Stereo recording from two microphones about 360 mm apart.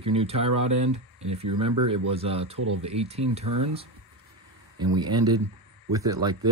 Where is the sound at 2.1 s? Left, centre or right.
Centre.